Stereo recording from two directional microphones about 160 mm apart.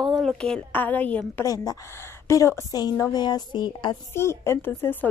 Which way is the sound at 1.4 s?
20° left (ahead or behind).